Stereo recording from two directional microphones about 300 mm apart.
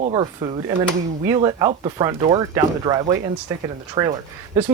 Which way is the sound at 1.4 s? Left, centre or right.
Centre.